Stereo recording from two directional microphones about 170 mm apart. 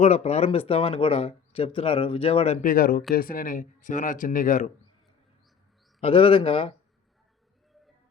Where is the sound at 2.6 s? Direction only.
55° left (ahead or behind).